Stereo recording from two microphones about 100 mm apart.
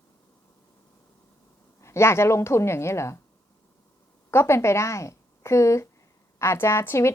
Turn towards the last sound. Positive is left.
turn(degrees=25)  # may be behind; listen again after turning